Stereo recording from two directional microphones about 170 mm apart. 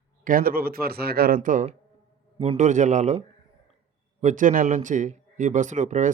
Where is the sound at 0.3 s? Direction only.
55° right (ahead or behind).